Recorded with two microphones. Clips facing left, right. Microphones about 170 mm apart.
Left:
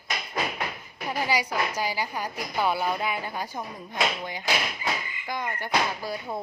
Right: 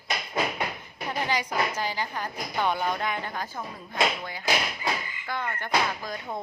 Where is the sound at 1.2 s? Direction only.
10° left (ahead or behind).